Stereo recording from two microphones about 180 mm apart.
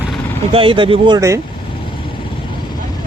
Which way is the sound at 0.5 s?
30° right (ahead or behind).